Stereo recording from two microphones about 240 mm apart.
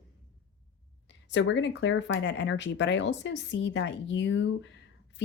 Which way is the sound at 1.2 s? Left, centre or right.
Left.